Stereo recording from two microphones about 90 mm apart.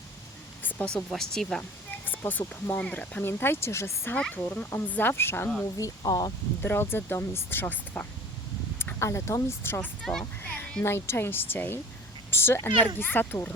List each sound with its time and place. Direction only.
0.6 s a sound: 15° left (ahead or behind)
0.9 s speech: 5° left (ahead or behind)
2.0 s a sound: 20° left (ahead or behind)
2.8 s speech: 15° left (ahead or behind); by 4.1 s 30° left (ahead or behind)
4.1 s speech: 15° left (ahead or behind)
5.7 s speech: 45° left (ahead or behind)
6.6 s speech: 25° left (ahead or behind)
10.0 s speech: 5° left (ahead or behind)
10.4 s children playing: 15° left (ahead or behind)
10.8 s speech: 30° left (ahead or behind)